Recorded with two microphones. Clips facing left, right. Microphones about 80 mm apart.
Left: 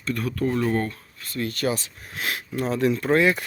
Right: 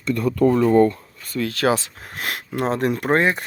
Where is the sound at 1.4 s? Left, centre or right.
Right.